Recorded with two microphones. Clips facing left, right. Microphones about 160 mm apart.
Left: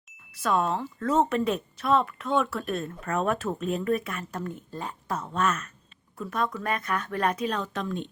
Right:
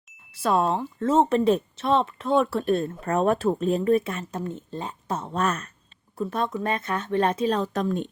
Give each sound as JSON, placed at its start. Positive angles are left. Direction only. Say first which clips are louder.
{"t": 0.4, "sound": "speech", "louder": "right 3 dB", "side_deg": -35}